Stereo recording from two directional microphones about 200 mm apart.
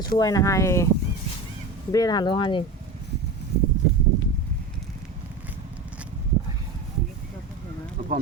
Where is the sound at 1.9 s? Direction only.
20° left (ahead or behind).